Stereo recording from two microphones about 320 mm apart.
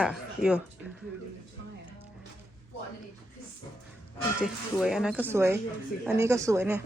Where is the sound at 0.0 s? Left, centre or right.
Centre.